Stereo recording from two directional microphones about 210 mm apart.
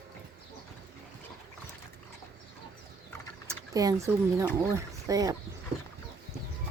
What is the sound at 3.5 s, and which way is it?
Speech, 15° right (ahead or behind).